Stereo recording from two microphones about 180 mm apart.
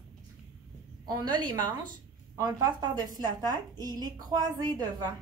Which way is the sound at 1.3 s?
25° right (ahead or behind).